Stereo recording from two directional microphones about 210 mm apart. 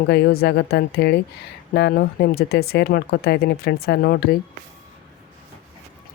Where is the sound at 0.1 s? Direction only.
50° left (ahead or behind).